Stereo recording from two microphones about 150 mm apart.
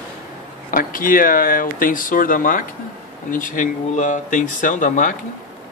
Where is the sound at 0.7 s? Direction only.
70° left (ahead or behind).